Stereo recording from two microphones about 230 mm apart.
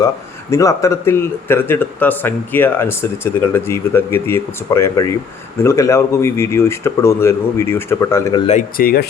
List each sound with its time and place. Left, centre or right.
0.5 s a man's voice: centre
8.4 s speech: left